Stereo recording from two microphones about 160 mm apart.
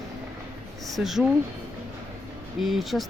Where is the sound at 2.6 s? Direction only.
Centre (ahead or behind).